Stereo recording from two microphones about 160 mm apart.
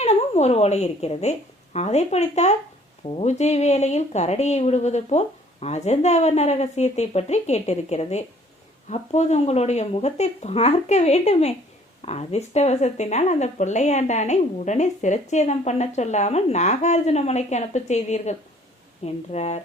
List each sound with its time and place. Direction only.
0.0 s speech: 45° left (ahead or behind)